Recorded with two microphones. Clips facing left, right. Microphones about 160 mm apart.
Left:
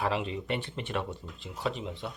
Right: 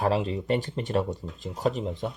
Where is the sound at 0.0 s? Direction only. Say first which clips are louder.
Right 5 dB; 35° right (ahead or behind).